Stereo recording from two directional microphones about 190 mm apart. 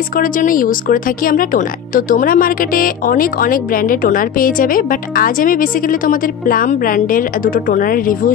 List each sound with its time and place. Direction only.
0.2 s speech: 45° left (ahead or behind)